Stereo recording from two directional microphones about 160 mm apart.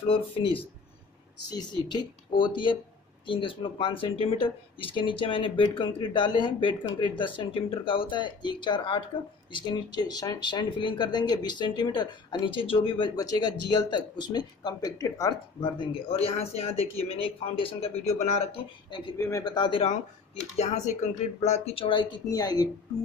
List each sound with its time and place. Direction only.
0.0 s speech: 35° left (ahead or behind)
18.9 s speech: 30° left (ahead or behind)
19.1 s speech: 20° left (ahead or behind)
19.8 s speech: 40° left (ahead or behind); by 22.7 s 25° left (ahead or behind)